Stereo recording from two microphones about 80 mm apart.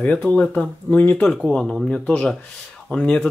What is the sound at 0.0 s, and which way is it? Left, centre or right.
Speech, centre.